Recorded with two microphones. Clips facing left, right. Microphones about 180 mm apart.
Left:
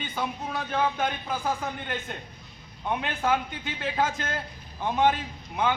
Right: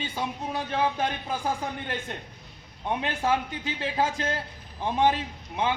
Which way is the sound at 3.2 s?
30° right (ahead or behind).